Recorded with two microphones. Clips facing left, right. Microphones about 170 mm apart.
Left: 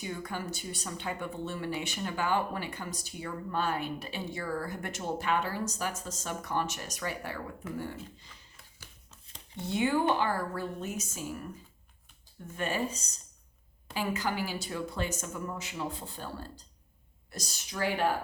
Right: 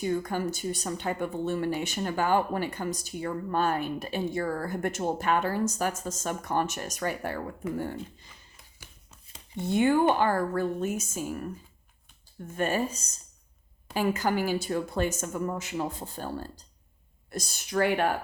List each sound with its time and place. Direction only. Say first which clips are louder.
0.0 s speech: right 9 dB; 45° right (ahead or behind)
9.6 s speech: right 6 dB; 50° right (ahead or behind)
12.5 s speech: right 5 dB; 45° right (ahead or behind)